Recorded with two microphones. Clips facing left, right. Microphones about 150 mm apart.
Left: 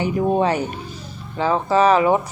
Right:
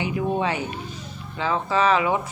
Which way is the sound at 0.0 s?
40° left (ahead or behind).